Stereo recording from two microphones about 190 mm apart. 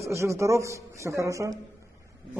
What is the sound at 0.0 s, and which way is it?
A man's voice, 15° right (ahead or behind).